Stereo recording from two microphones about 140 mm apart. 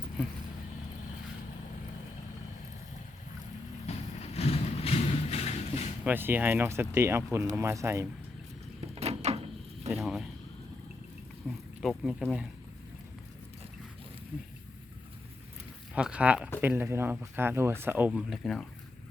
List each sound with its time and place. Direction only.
3.8 s a sound: 50° left (ahead or behind)
6.1 s speech: 15° right (ahead or behind)
8.8 s door: 50° right (ahead or behind)
10.0 s speech: 5° right (ahead or behind)
11.4 s speech: centre (ahead or behind)
16.0 s speech: 5° right (ahead or behind)
18.3 s speech: centre (ahead or behind)